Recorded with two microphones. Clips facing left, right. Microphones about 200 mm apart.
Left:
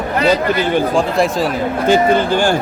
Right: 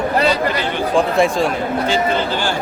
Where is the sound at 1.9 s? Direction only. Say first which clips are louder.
Left 9 dB; 50° left (ahead or behind).